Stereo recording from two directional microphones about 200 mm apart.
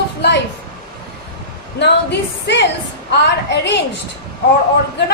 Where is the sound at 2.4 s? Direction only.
60° left (ahead or behind).